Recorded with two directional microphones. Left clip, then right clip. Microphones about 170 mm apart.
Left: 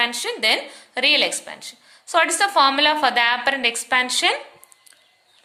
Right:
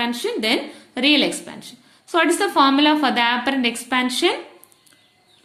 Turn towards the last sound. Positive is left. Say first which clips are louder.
# left 1 dB
turn(degrees=20)  # may be behind; listen again after turning